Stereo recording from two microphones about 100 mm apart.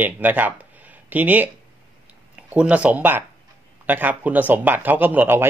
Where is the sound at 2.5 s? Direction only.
15° right (ahead or behind).